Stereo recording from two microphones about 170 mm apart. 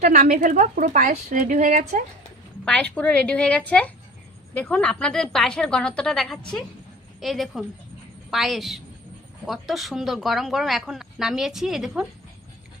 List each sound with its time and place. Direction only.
0.0 s speech: 45° right (ahead or behind)
2.6 s a woman's voice: 5° left (ahead or behind)